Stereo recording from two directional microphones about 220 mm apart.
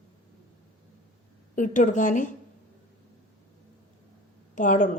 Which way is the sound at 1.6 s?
35° left (ahead or behind).